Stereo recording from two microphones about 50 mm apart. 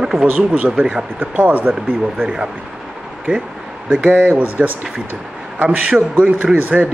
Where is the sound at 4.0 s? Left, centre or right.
Right.